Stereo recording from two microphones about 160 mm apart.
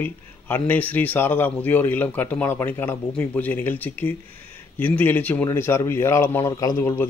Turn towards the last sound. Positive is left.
turn(degrees=15)  # may be behind; listen again after turning